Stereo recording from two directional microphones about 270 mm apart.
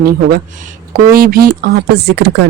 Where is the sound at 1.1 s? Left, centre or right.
Right.